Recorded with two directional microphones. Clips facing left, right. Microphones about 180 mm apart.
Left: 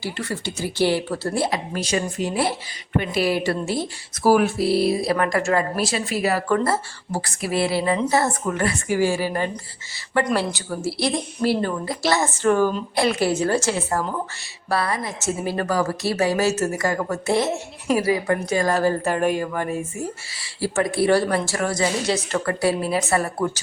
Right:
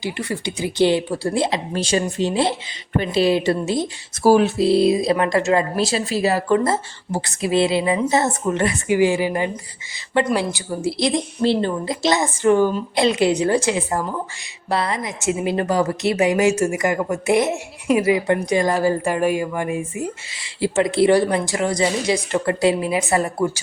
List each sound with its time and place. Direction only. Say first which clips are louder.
0.0 s a woman's voice: right 3 dB; 15° right (ahead or behind)